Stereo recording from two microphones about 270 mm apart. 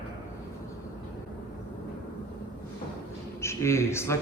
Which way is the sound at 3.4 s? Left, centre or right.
Centre.